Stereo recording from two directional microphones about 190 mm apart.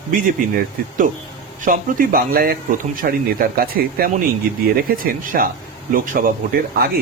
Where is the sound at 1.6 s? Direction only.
45° right (ahead or behind).